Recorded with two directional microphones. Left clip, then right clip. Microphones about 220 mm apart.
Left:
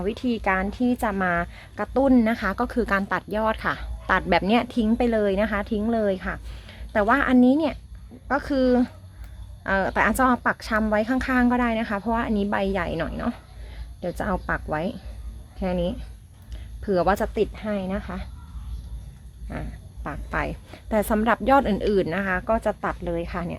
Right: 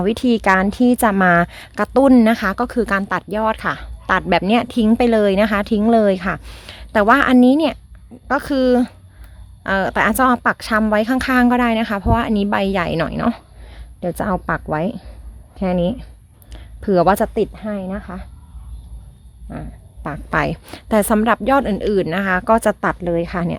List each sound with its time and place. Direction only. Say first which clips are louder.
0.0 s speech: right 9 dB; 50° right (ahead or behind); by 18.3 s 30° right (ahead or behind)
20.1 s a woman's voice: right 9 dB; 50° right (ahead or behind)